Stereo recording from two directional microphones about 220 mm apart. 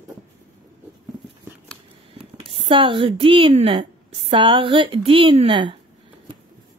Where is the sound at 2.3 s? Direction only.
25° right (ahead or behind).